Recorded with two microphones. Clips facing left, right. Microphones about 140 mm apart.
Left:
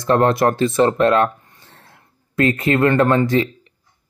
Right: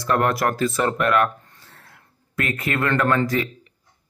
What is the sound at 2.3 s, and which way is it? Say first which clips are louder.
Speech: left 8 dB; 25° left (ahead or behind).